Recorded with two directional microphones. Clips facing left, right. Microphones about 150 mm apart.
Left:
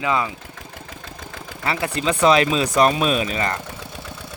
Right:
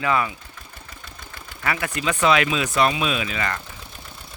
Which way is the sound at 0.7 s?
90° left.